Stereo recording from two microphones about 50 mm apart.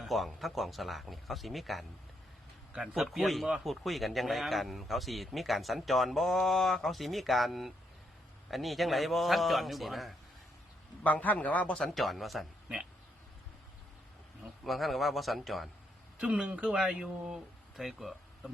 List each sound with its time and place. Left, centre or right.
0.0 s speech: centre
11.0 s a man's voice: left
11.9 s speech: centre
14.6 s speech: centre
16.2 s speech: right
16.7 s speech: centre